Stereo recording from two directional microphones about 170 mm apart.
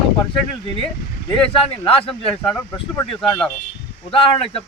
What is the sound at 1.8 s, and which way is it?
Speech, 35° left (ahead or behind).